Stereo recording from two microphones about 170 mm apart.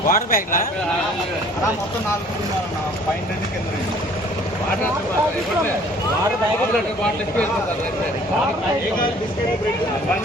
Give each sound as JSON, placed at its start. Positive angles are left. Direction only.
{"t": 0.1, "sound": "a man's voice", "side_deg": 55}